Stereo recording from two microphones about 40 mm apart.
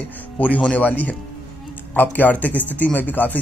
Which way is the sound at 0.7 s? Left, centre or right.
Left.